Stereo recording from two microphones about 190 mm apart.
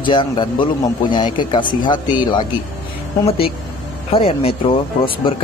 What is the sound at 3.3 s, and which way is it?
Speech, 30° left (ahead or behind).